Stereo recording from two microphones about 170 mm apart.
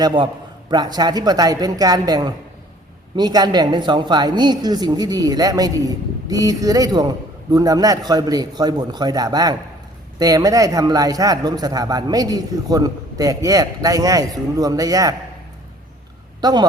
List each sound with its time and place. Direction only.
0.0 s a man's voice: 25° right (ahead or behind)
16.4 s a man's voice: 25° right (ahead or behind)